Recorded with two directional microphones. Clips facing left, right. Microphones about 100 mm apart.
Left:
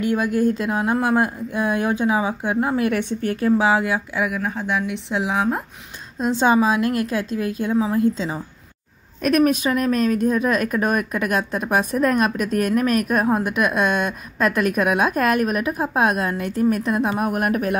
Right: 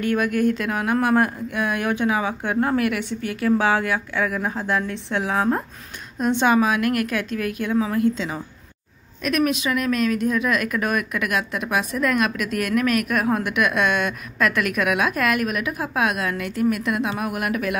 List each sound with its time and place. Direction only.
0.0 s speech: 20° left (ahead or behind)
3.0 s a woman's voice: 45° left (ahead or behind)
3.3 s speech: 25° left (ahead or behind)
4.1 s speech: 10° left (ahead or behind)
4.4 s speech: centre (ahead or behind)
5.3 s speech: 10° left (ahead or behind)
6.1 s speech: 25° left (ahead or behind)
9.2 s speech: 40° left (ahead or behind)